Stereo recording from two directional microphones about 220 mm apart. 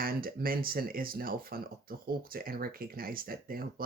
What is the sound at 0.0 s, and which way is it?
Speech, 40° right (ahead or behind).